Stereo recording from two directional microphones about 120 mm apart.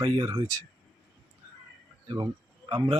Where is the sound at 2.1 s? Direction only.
35° right (ahead or behind).